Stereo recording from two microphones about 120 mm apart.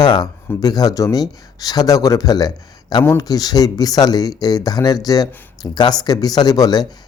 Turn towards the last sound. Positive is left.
turn(degrees=35)  # may be behind; listen again after turning